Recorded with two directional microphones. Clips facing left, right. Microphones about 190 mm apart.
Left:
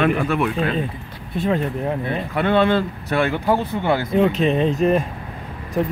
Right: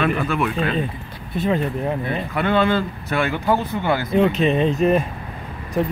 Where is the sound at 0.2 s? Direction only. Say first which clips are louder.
Left 1 dB; 40° left (ahead or behind).